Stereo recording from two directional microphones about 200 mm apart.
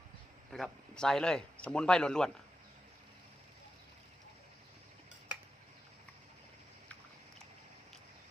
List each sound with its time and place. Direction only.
0.5 s speech: 5° left (ahead or behind)